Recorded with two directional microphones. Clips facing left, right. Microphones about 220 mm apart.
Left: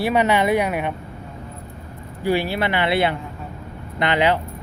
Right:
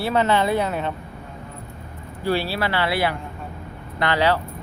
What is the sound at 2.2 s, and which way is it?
Speech, 15° left (ahead or behind).